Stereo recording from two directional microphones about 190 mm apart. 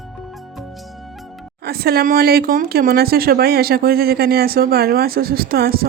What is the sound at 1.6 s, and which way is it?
Speech, 55° right (ahead or behind).